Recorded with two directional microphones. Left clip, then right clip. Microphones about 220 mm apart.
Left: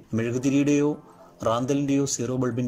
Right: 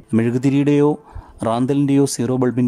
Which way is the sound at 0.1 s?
20° right (ahead or behind).